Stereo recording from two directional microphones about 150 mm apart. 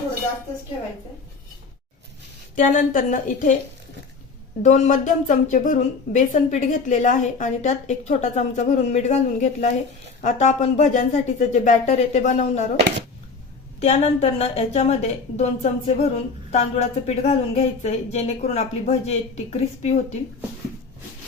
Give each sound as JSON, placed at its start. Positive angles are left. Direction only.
{"t": 2.6, "sound": "a woman's voice", "side_deg": 60}
{"t": 4.6, "sound": "a woman's voice", "side_deg": 55}
{"t": 13.8, "sound": "a woman's voice", "side_deg": 45}